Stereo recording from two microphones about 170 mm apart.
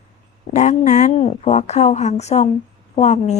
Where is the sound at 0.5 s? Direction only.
45° left (ahead or behind).